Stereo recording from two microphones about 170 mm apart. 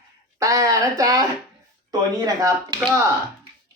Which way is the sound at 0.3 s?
20° right (ahead or behind).